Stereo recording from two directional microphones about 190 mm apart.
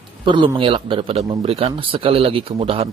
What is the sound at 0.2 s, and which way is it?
A man's voice, 25° right (ahead or behind).